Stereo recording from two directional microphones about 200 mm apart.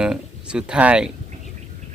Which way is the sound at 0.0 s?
5° right (ahead or behind).